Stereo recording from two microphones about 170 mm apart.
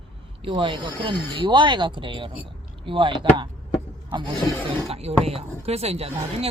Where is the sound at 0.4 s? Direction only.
30° right (ahead or behind).